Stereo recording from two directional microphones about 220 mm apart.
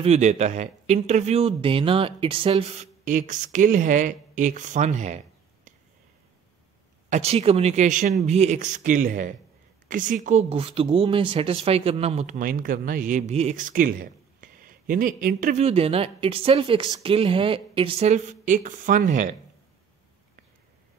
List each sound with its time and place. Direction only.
0.0 s speech: 30° right (ahead or behind)
7.1 s speech: 30° right (ahead or behind)